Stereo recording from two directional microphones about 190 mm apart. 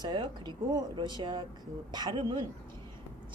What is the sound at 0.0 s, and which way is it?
Speech, 25° right (ahead or behind).